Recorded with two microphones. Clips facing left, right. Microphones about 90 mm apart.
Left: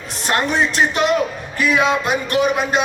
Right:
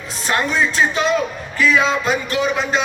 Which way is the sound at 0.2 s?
65° left (ahead or behind).